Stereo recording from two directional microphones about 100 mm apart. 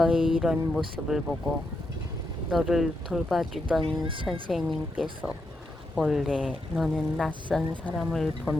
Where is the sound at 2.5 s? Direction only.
5° right (ahead or behind).